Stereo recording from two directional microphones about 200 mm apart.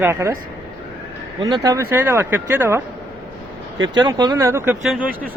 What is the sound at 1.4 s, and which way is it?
Speech, 20° right (ahead or behind).